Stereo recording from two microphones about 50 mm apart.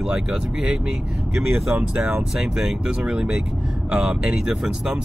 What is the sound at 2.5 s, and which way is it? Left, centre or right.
Speech, centre.